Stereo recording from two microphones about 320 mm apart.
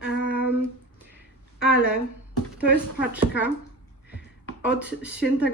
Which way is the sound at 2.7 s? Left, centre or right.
Centre.